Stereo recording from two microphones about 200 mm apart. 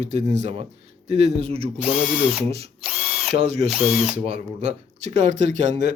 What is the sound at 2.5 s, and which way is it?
Speech, 30° right (ahead or behind).